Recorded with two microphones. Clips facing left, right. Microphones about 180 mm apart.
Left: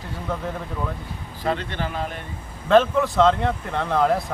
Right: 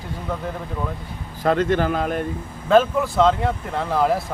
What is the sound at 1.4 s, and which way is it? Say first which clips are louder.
Speech: right 7 dB; 45° right (ahead or behind).